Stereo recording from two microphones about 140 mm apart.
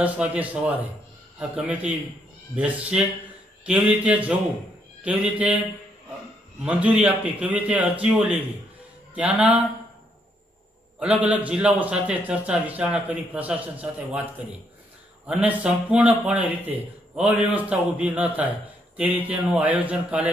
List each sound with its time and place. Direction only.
0.0 s a man's voice: 10° right (ahead or behind)
6.6 s a man's voice: 10° right (ahead or behind)
11.0 s a man's voice: 10° right (ahead or behind)
15.2 s a man's voice: 10° right (ahead or behind)